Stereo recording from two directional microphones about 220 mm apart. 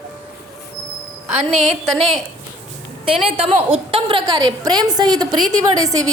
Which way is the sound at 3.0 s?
25° right (ahead or behind).